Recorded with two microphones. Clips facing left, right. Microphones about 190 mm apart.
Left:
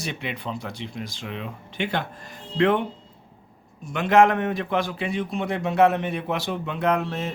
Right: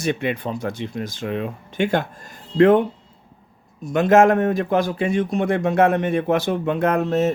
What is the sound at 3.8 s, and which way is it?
A man's voice, 40° right (ahead or behind).